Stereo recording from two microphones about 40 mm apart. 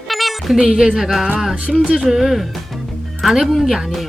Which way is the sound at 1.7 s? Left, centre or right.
Right.